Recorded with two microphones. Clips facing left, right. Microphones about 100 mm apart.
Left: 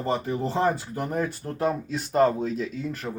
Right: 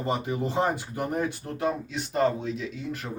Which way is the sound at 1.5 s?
40° left (ahead or behind).